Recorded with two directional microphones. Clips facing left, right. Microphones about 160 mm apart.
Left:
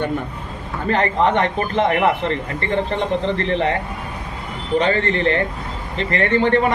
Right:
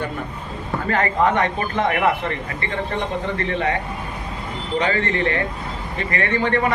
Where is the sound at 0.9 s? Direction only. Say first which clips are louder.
Left 2 dB; 25° left (ahead or behind).